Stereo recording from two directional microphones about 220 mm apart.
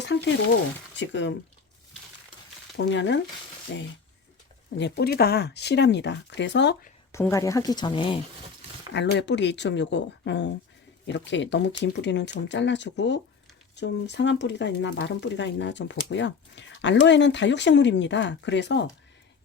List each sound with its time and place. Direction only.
0.0 s speech: 50° left (ahead or behind)
2.7 s speech: 55° left (ahead or behind)
7.1 s speech: 15° left (ahead or behind)
8.9 s speech: 50° left (ahead or behind)